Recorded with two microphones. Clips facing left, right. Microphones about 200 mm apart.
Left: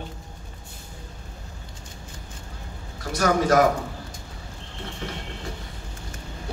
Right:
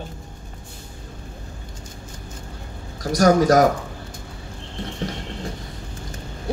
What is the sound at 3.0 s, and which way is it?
Speech, 40° right (ahead or behind).